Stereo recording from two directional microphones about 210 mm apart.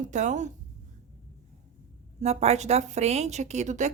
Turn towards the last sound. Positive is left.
turn(degrees=-35)  # may be behind; listen again after turning